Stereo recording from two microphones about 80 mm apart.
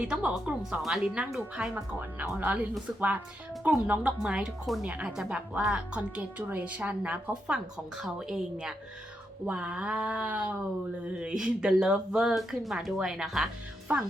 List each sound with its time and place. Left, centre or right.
0.0 s speech: centre
3.7 s speech: centre
5.0 s speech: centre
13.9 s speech: centre